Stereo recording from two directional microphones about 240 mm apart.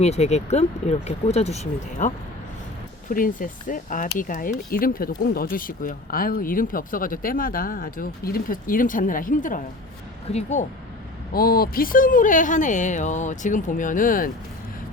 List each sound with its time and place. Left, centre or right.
0.0 s speech: left